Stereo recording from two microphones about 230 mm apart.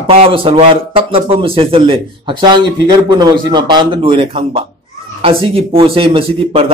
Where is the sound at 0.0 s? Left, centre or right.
Right.